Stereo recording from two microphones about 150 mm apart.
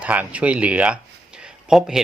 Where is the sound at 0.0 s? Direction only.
10° right (ahead or behind).